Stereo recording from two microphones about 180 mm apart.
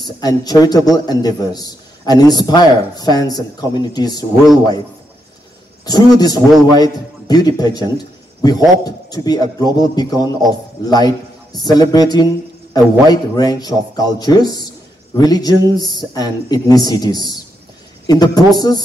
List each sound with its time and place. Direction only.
0.0 s a man's voice: 20° left (ahead or behind)
5.9 s a man's voice: 20° left (ahead or behind)